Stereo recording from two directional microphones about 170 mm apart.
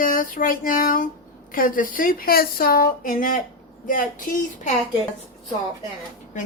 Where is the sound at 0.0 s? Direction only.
55° left (ahead or behind).